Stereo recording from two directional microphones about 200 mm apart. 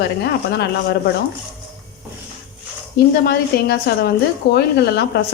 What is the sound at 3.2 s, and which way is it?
A woman's voice, 55° left (ahead or behind).